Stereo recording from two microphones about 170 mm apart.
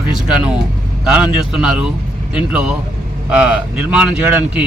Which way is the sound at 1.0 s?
5° right (ahead or behind).